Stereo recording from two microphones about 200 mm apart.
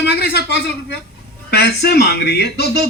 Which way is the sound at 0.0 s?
55° left (ahead or behind).